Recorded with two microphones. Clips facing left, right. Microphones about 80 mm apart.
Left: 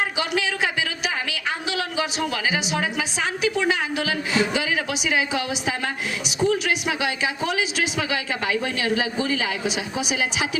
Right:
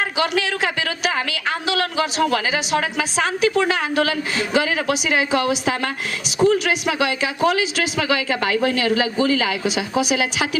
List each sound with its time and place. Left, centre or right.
0.2 s a woman's voice: right
6.4 s speech: right